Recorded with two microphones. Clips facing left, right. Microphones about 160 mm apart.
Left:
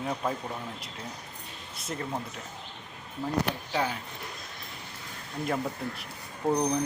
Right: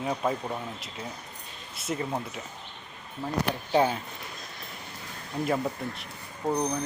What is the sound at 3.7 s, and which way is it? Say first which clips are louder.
Speech: right 7 dB; 25° right (ahead or behind).